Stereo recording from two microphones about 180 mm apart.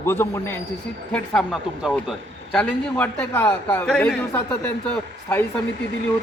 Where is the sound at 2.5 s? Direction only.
10° left (ahead or behind).